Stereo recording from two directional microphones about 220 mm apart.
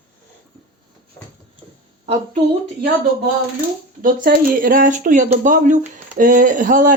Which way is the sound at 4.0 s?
40° right (ahead or behind).